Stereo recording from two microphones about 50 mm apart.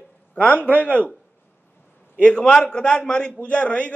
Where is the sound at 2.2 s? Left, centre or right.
Left.